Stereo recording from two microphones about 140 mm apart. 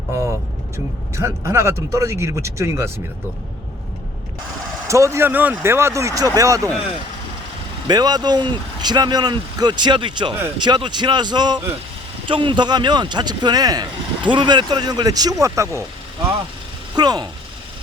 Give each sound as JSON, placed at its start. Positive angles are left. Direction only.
{"t": 1.1, "sound": "speech", "side_deg": -20}
{"t": 4.9, "sound": "speech", "side_deg": -20}
{"t": 7.9, "sound": "speech", "side_deg": -30}
{"t": 16.9, "sound": "speech", "side_deg": -30}